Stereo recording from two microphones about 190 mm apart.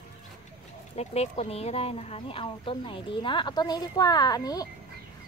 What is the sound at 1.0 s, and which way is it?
Speech, 35° left (ahead or behind).